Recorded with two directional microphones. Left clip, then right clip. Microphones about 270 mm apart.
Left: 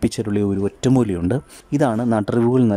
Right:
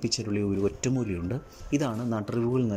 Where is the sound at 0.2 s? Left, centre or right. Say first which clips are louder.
Left 7 dB; centre.